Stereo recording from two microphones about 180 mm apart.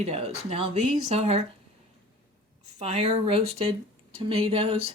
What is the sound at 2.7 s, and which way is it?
Speech, 40° right (ahead or behind).